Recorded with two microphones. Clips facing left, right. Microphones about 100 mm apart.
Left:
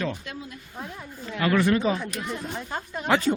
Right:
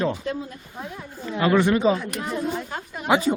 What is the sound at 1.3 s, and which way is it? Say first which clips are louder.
Speech: right 3 dB; 25° right (ahead or behind).